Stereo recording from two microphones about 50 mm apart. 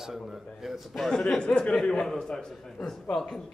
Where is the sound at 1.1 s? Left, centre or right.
Centre.